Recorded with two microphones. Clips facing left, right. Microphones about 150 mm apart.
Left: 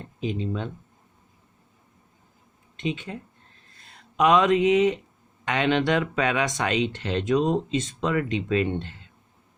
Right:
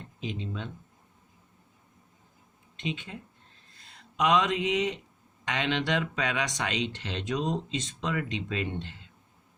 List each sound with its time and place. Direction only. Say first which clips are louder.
0.0 s speech: left 7 dB; 50° left (ahead or behind)
2.8 s speech: left 6 dB; 50° left (ahead or behind)
4.2 s speech: left 6 dB; 50° left (ahead or behind)